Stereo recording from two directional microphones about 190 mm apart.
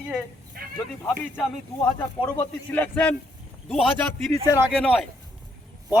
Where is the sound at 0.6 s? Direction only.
50° right (ahead or behind).